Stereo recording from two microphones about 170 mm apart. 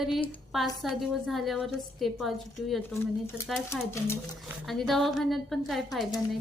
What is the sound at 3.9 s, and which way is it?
Speech, 15° left (ahead or behind).